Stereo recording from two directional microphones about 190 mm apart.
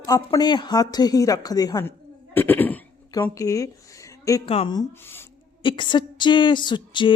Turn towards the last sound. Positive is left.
turn(degrees=25)  # may be behind; listen again after turning